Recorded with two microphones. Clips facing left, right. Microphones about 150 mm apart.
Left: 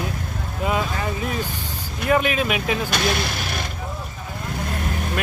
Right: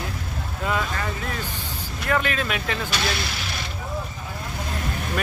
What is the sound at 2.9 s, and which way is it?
Speech, 50° left (ahead or behind).